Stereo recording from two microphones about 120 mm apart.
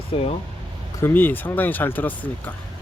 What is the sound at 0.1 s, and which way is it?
Speech, 55° left (ahead or behind).